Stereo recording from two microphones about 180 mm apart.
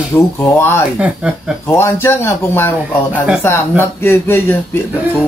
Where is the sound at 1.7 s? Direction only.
15° left (ahead or behind).